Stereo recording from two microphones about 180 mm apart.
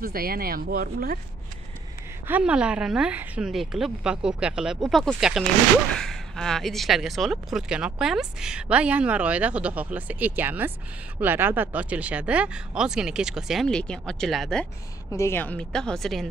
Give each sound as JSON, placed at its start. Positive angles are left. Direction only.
{"t": 0.0, "sound": "speech", "side_deg": -55}
{"t": 2.2, "sound": "speech", "side_deg": -5}
{"t": 15.0, "sound": "speech", "side_deg": 15}